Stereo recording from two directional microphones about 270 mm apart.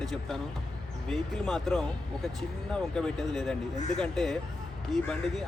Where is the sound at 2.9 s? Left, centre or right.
Centre.